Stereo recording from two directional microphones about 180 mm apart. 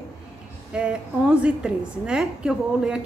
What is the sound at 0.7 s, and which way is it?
A woman's voice, 5° right (ahead or behind).